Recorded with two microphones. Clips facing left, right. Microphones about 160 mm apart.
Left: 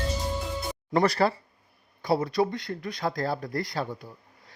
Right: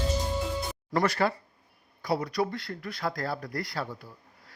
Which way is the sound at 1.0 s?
35° left (ahead or behind).